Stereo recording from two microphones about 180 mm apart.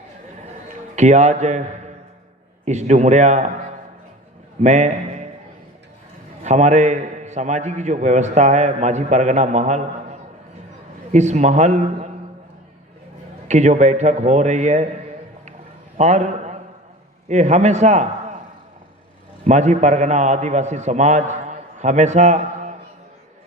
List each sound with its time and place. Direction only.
0.9 s a man's voice: 40° right (ahead or behind)
2.6 s a man's voice: 40° right (ahead or behind)
6.4 s a man's voice: 40° right (ahead or behind)
13.5 s a man's voice: 40° right (ahead or behind)
16.0 s a man's voice: 40° right (ahead or behind)
19.5 s a man's voice: 40° right (ahead or behind)